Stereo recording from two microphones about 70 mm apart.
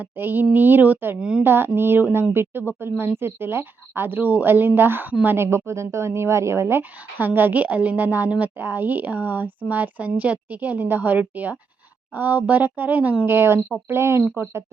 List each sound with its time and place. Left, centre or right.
0.0 s a woman's voice: right